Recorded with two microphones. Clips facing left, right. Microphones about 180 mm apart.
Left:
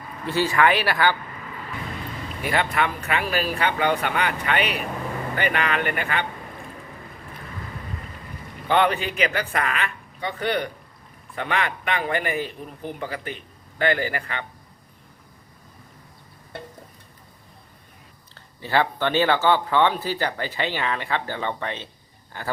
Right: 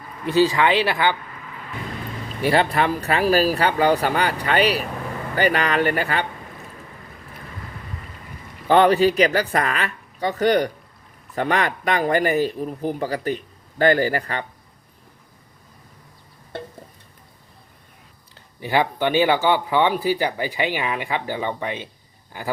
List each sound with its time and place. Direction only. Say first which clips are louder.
0.3 s speech: right 3 dB; 15° right (ahead or behind)
2.4 s a man's voice: right 5 dB; 30° right (ahead or behind)
8.6 s a man's voice: right 6 dB; 35° right (ahead or behind)
18.3 s speech: right 2 dB; 15° right (ahead or behind)